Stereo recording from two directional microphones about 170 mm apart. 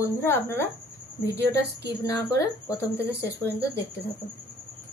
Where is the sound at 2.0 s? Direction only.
20° left (ahead or behind).